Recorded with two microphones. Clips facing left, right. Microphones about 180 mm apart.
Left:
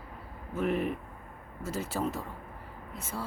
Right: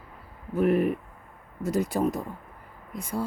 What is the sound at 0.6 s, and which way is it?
Speech, 45° right (ahead or behind).